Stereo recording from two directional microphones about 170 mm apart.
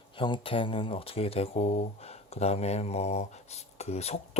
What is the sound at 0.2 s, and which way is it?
Speech, 30° left (ahead or behind).